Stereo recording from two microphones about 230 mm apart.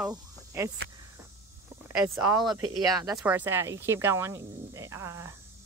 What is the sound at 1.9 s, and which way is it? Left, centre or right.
Speech, centre.